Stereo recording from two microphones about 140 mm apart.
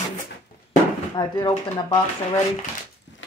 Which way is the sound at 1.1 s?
30° left (ahead or behind).